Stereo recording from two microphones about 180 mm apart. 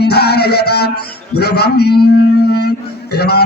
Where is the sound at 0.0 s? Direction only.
60° left (ahead or behind).